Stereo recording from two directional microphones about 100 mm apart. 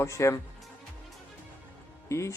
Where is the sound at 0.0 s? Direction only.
30° left (ahead or behind).